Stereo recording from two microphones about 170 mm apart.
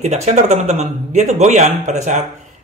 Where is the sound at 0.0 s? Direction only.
45° right (ahead or behind).